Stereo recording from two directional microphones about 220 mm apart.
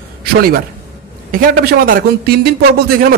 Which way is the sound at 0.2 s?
45° right (ahead or behind).